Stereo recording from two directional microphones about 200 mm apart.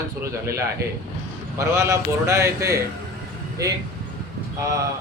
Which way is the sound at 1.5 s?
15° right (ahead or behind).